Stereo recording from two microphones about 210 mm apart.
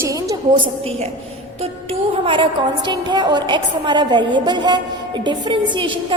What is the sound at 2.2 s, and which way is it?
A woman's voice, 25° right (ahead or behind).